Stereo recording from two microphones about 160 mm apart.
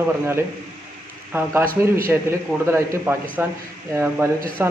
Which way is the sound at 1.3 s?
15° right (ahead or behind).